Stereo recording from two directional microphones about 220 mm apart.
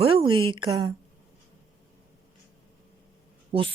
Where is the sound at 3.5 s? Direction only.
25° right (ahead or behind).